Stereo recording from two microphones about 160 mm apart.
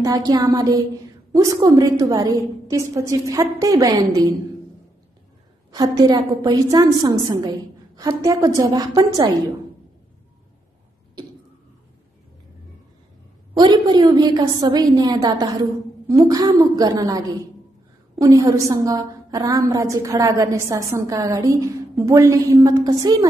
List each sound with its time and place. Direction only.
0.0 s a woman's voice: 20° right (ahead or behind)
5.7 s a woman's voice: 25° right (ahead or behind)
13.6 s a woman's voice: 25° right (ahead or behind)